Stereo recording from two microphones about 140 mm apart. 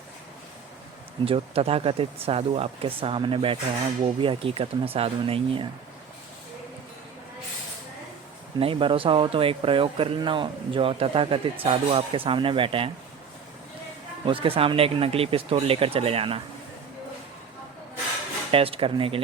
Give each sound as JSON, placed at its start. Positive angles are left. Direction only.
{"t": 1.2, "sound": "speech", "side_deg": -45}
{"t": 8.5, "sound": "speech", "side_deg": -40}
{"t": 14.3, "sound": "speech", "side_deg": -40}
{"t": 18.5, "sound": "speech", "side_deg": -40}